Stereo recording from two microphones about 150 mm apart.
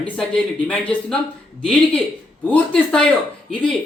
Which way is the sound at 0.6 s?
10° left (ahead or behind).